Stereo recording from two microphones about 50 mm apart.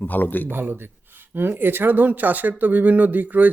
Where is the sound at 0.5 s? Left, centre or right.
Right.